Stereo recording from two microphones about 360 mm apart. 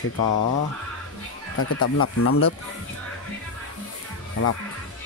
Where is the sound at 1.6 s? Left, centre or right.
Left.